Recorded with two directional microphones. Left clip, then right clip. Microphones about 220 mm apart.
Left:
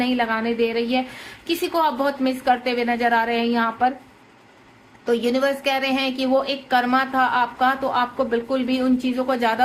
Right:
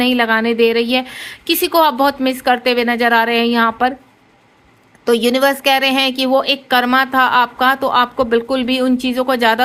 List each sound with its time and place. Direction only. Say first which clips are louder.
0.0 s a woman's voice: right 8 dB; 45° right (ahead or behind)
5.0 s a woman's voice: right 7 dB; 45° right (ahead or behind)